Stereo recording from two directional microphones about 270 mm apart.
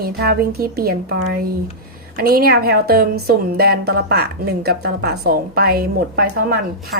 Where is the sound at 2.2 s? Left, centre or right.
Right.